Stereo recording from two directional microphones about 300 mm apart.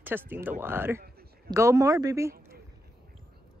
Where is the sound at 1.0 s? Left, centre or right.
Right.